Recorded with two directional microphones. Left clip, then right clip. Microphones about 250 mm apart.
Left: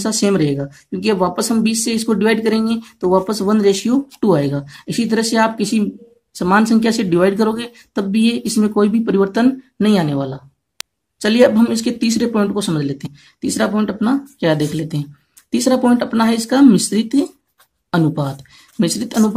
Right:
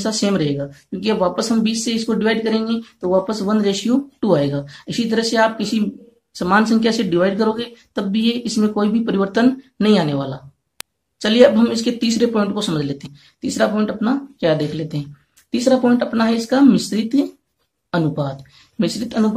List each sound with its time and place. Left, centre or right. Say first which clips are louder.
0.0 s speech: left 3 dB; left